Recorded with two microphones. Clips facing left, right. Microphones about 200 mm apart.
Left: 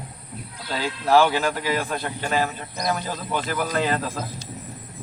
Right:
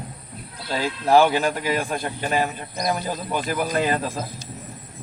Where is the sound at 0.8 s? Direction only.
15° right (ahead or behind).